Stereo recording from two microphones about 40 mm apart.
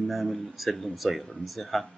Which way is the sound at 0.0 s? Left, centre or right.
Centre.